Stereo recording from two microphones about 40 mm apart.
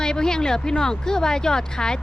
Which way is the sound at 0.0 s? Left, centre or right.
Centre.